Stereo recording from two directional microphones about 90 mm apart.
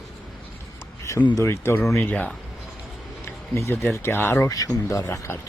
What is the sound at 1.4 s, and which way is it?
Speech, 25° left (ahead or behind).